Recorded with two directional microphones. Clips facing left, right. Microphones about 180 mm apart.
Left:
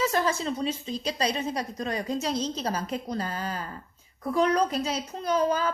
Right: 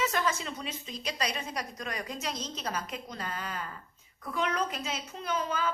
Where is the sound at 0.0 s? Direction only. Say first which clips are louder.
Left 5 dB; 35° left (ahead or behind).